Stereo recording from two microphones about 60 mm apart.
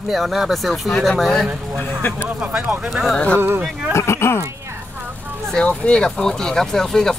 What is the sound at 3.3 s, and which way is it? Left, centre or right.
Speech, right.